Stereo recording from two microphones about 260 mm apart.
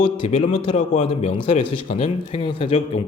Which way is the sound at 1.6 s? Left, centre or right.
Left.